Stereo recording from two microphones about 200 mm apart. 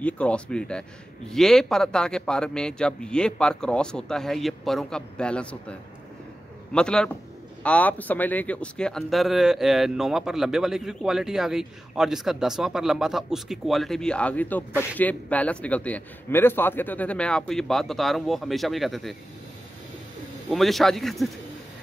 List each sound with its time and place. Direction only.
0.0 s speech: 5° left (ahead or behind)
20.4 s speech: centre (ahead or behind)